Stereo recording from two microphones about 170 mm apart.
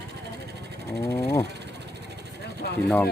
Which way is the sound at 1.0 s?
20° left (ahead or behind).